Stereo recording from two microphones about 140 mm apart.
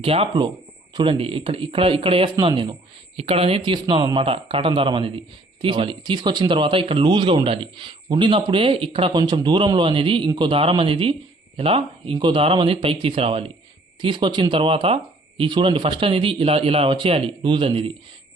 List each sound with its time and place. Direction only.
0.0 s speech: 40° right (ahead or behind)